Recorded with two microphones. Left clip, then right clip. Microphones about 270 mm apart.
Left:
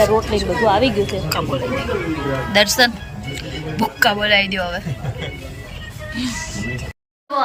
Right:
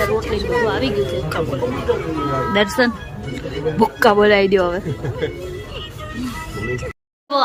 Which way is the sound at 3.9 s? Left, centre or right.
Centre.